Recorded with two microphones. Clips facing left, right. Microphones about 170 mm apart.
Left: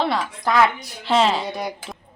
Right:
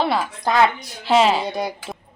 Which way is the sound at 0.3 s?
25° right (ahead or behind).